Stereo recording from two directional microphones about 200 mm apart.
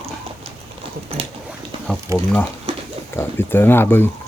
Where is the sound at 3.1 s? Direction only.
10° left (ahead or behind).